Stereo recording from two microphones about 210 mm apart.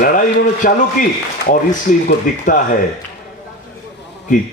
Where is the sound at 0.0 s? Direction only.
40° left (ahead or behind).